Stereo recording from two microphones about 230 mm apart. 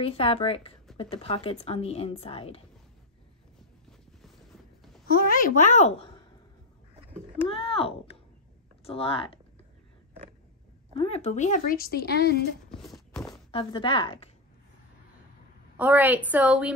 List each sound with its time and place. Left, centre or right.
0.0 s a woman's voice: left
5.1 s a woman's voice: left
7.4 s a woman's voice: left
11.0 s speech: left
12.6 s clip-clop: centre
13.5 s a woman's voice: left
15.8 s a woman's voice: centre